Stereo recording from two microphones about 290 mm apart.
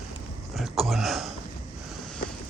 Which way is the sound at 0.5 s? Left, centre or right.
Centre.